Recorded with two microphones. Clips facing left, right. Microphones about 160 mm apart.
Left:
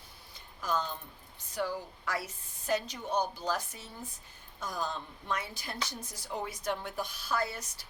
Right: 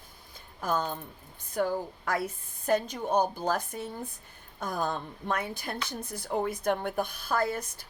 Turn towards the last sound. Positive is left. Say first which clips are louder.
# right 5 dB
turn(degrees=-50)  # may be behind; listen again after turning